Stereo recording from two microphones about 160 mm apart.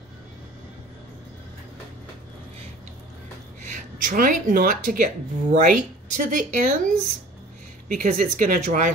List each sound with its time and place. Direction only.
3.6 s speech: 50° right (ahead or behind)